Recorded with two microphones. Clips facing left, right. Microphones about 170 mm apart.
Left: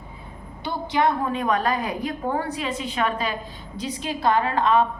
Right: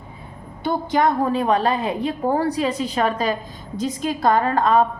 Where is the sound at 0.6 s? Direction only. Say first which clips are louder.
Right 3 dB; 45° right (ahead or behind).